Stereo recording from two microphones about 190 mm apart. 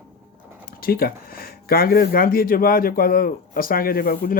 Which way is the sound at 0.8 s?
50° left (ahead or behind).